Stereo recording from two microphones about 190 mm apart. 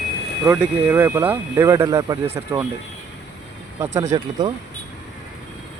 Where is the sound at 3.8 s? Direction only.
15° right (ahead or behind).